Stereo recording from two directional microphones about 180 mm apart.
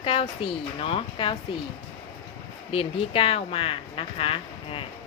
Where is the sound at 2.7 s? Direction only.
30° left (ahead or behind).